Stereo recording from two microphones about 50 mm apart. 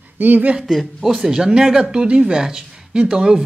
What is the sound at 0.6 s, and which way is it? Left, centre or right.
Speech, centre.